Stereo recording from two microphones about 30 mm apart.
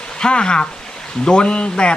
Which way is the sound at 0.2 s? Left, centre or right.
Left.